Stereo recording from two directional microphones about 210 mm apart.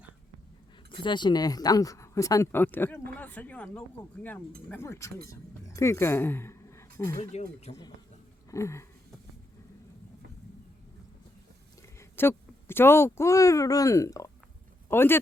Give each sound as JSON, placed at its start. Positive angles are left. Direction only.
{"t": 0.9, "sound": "speech", "side_deg": 20}
{"t": 7.2, "sound": "speech", "side_deg": 30}
{"t": 8.4, "sound": "a sound", "side_deg": 15}
{"t": 11.9, "sound": "speech", "side_deg": 10}